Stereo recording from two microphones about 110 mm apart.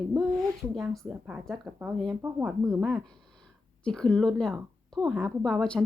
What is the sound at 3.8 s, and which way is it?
A woman's voice, 5° left (ahead or behind).